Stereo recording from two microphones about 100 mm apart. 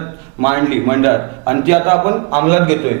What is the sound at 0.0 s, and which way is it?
A man's voice, 30° right (ahead or behind).